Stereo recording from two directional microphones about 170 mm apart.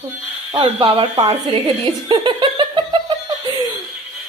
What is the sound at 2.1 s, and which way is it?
Giggle, 30° right (ahead or behind).